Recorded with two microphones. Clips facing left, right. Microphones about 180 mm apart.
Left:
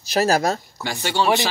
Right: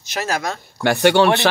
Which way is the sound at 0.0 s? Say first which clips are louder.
Left 5 dB; 35° left (ahead or behind).